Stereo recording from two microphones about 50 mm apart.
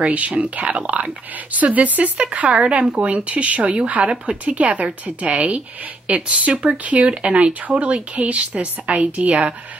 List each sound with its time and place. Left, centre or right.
0.0 s speech: right